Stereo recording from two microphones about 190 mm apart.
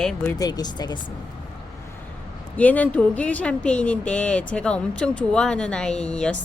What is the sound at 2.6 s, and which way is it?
Speech, 10° left (ahead or behind).